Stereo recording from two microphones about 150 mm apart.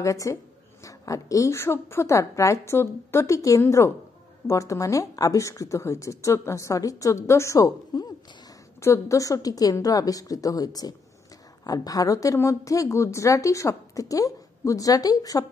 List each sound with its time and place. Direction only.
0.0 s a woman's voice: 20° left (ahead or behind)